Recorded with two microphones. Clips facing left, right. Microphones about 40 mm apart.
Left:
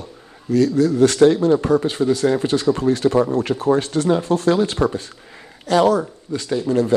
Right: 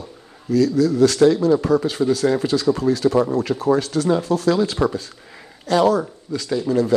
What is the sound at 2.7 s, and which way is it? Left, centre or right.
Speech, left.